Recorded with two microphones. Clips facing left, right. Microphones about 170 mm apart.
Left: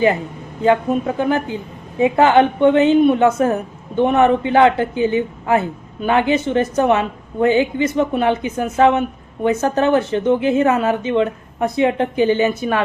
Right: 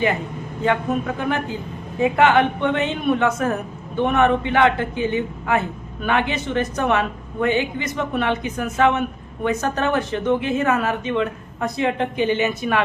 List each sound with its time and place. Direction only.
0.6 s a woman's voice: 30° left (ahead or behind)